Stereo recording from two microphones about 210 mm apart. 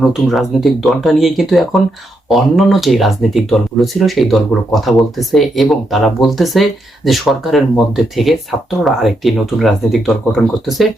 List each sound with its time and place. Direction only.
0.0 s speech: centre (ahead or behind)